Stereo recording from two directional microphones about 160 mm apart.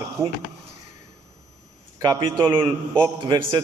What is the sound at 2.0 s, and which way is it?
Speech, 25° right (ahead or behind).